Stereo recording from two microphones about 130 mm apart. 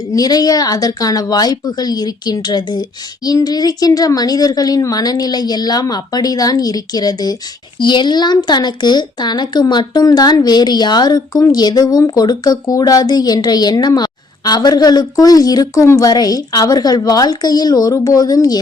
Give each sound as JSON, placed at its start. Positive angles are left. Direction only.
{"t": 0.1, "sound": "a woman's voice", "side_deg": 30}